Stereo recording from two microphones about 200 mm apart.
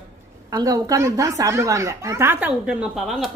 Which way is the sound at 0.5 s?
20° right (ahead or behind).